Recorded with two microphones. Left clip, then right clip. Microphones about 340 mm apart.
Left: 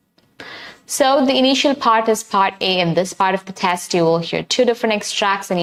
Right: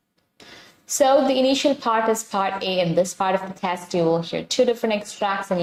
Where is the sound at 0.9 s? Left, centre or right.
Left.